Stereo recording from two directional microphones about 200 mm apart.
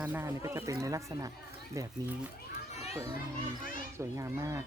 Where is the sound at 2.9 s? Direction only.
15° right (ahead or behind).